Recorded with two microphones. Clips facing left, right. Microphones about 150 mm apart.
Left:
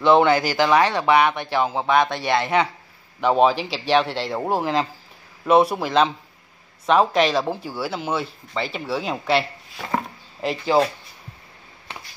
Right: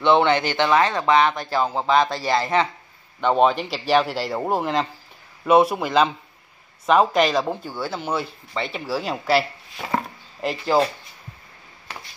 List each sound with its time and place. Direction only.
0.0 s speech: 5° left (ahead or behind)
1.5 s speech: centre (ahead or behind)